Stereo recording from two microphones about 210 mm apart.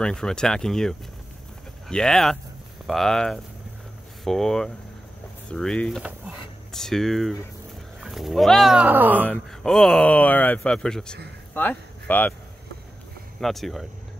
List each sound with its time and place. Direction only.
0.0 s speech: 5° left (ahead or behind)
9.3 s speech: 5° left (ahead or behind)
13.4 s speech: centre (ahead or behind)